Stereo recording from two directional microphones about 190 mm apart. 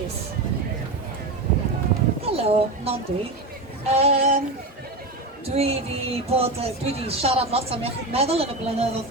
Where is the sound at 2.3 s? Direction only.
30° right (ahead or behind).